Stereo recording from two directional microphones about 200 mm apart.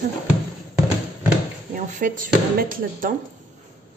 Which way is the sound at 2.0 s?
45° right (ahead or behind).